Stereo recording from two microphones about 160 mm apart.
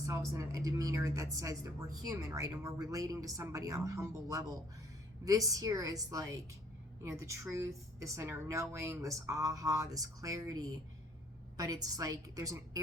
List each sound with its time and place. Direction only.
0.0 s a woman's voice: 20° right (ahead or behind)